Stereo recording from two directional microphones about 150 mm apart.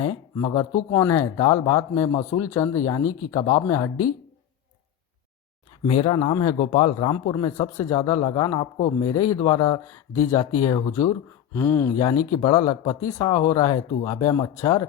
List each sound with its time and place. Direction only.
0.3 s speech: 25° left (ahead or behind)
5.9 s speech: 35° left (ahead or behind)
11.5 s speech: 15° left (ahead or behind)
11.9 s speech: 25° left (ahead or behind)